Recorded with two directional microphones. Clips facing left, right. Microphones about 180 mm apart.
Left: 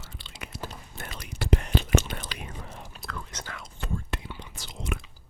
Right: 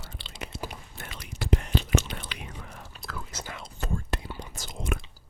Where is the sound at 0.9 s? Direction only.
45° left (ahead or behind).